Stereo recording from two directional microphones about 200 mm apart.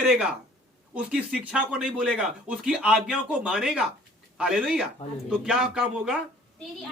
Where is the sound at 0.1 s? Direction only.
5° right (ahead or behind).